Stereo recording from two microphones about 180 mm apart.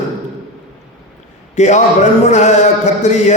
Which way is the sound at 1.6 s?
40° left (ahead or behind).